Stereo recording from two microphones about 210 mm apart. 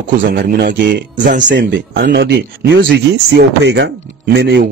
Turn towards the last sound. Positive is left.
turn(degrees=-55)  # may be behind; listen again after turning